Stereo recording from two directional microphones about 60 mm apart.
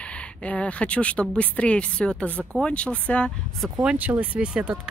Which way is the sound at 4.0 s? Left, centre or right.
Right.